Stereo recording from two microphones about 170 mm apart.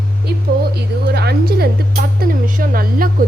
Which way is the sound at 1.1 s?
70° right (ahead or behind).